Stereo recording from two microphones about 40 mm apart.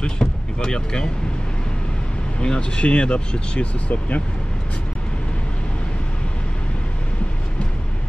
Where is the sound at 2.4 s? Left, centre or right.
Left.